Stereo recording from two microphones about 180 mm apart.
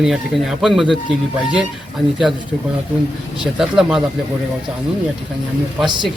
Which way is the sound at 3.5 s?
5° right (ahead or behind).